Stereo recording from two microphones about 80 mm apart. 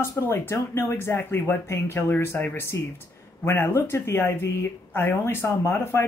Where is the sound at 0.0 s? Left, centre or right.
Left.